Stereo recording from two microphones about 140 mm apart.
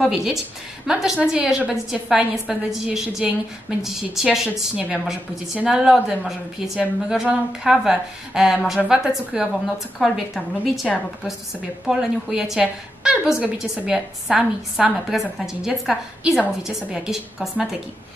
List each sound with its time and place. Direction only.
0.0 s a woman's voice: 5° right (ahead or behind)
11.9 s a woman's voice: 5° right (ahead or behind)